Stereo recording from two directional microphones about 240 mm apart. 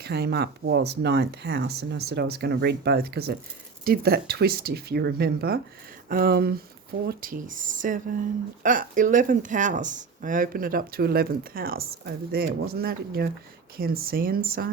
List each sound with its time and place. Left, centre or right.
0.0 s speech: right